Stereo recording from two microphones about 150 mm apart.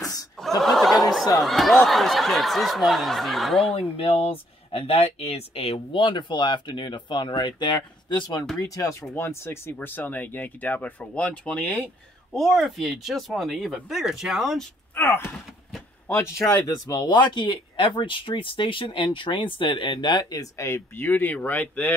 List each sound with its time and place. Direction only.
0.6 s a sound: centre (ahead or behind)
1.4 s speech: centre (ahead or behind)
3.7 s speech: 35° left (ahead or behind); by 14.6 s centre (ahead or behind)
15.0 s speech: 15° left (ahead or behind)